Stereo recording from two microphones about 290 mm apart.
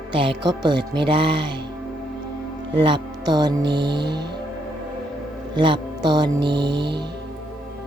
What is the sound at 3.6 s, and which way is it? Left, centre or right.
Mantra, right.